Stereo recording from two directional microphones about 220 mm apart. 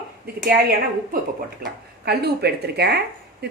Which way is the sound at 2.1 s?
50° right (ahead or behind).